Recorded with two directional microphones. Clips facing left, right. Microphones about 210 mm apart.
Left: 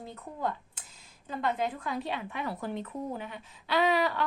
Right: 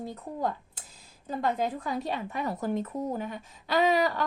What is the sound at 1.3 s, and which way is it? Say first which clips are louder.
A woman's voice: right 2 dB; 40° right (ahead or behind).